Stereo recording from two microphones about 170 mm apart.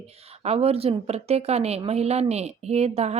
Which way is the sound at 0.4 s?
35° right (ahead or behind).